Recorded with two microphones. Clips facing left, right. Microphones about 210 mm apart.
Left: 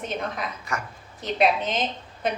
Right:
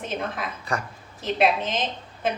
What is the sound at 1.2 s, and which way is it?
Speech, 5° right (ahead or behind).